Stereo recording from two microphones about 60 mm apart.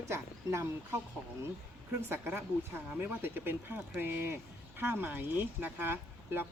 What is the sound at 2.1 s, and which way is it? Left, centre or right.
Speech, right.